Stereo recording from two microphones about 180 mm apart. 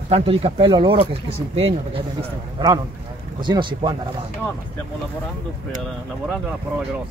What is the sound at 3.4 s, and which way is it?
Speech, 25° right (ahead or behind).